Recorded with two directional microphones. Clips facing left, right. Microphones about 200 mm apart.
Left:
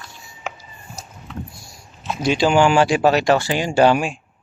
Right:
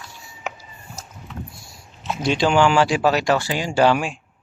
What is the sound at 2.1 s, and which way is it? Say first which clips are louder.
Speech: left 2 dB; centre (ahead or behind).